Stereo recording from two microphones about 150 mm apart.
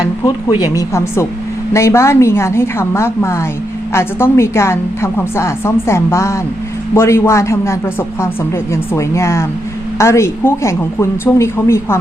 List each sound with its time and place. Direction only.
0.3 s speech: 25° left (ahead or behind)